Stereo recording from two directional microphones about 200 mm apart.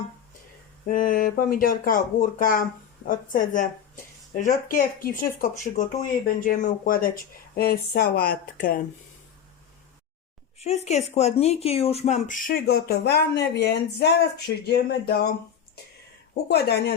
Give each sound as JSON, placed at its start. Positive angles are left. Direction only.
{"t": 0.9, "sound": "speech", "side_deg": 40}
{"t": 10.6, "sound": "speech", "side_deg": 35}
{"t": 16.5, "sound": "speech", "side_deg": 55}